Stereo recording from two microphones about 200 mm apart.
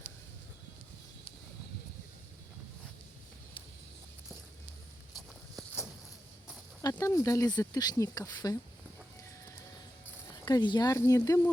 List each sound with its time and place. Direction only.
5.5 s walk: centre (ahead or behind)
6.8 s speech: 15° left (ahead or behind)
10.3 s speech: 20° left (ahead or behind)